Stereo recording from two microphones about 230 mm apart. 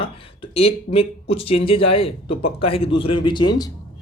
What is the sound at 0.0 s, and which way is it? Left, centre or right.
Speech, left.